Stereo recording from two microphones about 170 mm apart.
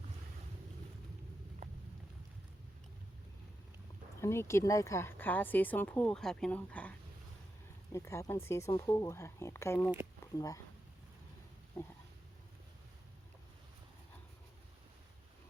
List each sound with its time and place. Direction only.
4.2 s a woman's voice: 15° left (ahead or behind)
7.9 s a woman's voice: 15° left (ahead or behind)
11.8 s a woman's voice: 15° left (ahead or behind)